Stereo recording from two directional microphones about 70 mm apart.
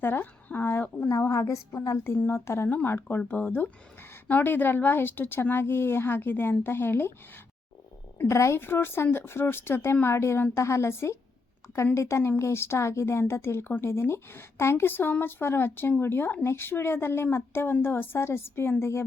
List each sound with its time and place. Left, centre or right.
0.0 s a sound: left
1.3 s a woman's voice: left
1.7 s speech: left
2.0 s a woman's voice: left
2.6 s a woman's voice: left
8.3 s a woman's voice: left